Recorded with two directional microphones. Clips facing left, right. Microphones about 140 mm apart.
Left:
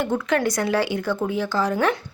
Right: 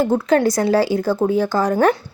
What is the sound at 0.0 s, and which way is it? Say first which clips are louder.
Speech: right 6 dB; 35° right (ahead or behind).